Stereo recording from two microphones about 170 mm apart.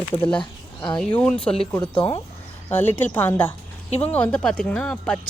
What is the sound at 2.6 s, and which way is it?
A woman's voice, 10° left (ahead or behind).